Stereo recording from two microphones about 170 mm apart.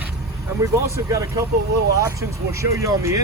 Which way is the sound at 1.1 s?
20° right (ahead or behind).